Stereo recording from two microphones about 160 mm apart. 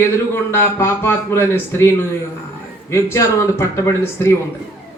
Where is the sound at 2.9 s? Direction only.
15° left (ahead or behind).